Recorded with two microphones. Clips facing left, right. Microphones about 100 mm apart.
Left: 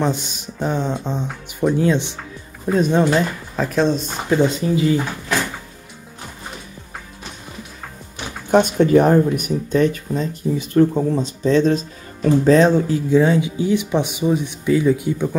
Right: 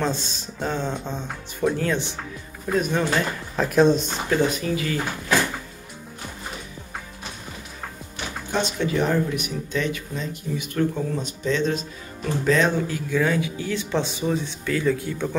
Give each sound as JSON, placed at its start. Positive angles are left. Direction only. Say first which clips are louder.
{"t": 0.0, "sound": "speech", "louder": "left 4 dB", "side_deg": 15}
{"t": 3.5, "sound": "speech", "louder": "right 1 dB", "side_deg": -5}
{"t": 4.3, "sound": "speech", "louder": "left 5 dB", "side_deg": 25}
{"t": 8.5, "sound": "speech", "louder": "left 11 dB", "side_deg": 55}